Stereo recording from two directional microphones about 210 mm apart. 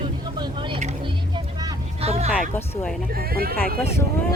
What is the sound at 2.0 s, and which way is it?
Vehicle, 30° right (ahead or behind).